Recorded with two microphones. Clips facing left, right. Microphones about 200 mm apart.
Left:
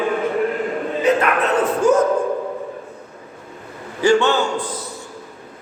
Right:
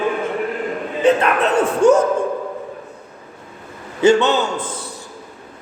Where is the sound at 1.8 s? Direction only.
75° right (ahead or behind).